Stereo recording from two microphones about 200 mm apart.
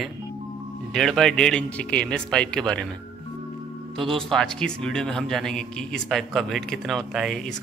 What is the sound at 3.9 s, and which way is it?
A man's voice, centre (ahead or behind).